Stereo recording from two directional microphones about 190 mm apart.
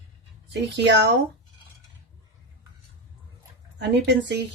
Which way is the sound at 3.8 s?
65° right (ahead or behind).